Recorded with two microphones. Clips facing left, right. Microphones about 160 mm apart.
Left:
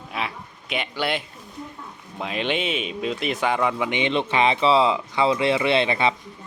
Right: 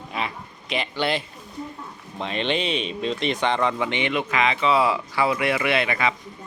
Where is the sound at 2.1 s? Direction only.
5° left (ahead or behind).